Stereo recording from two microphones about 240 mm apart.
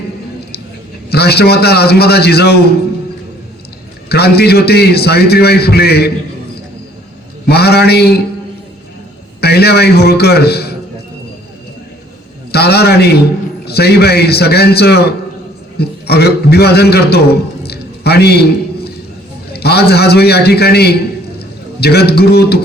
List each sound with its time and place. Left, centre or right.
1.1 s a man's voice: left
4.1 s a man's voice: left
7.4 s a man's voice: left
9.4 s a man's voice: left
12.5 s a man's voice: left
19.5 s a man's voice: left